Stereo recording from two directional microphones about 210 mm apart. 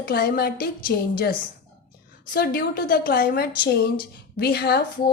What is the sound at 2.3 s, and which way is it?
A woman's voice, 45° left (ahead or behind).